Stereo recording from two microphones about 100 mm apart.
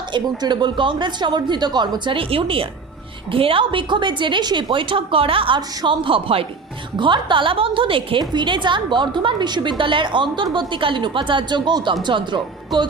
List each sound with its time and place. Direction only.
0.1 s a woman's voice: 50° right (ahead or behind); by 5.5 s 65° right (ahead or behind)
5.5 s a woman's voice: 55° right (ahead or behind)
7.0 s a woman's voice: 55° right (ahead or behind)
8.2 s a woman's voice: 50° right (ahead or behind)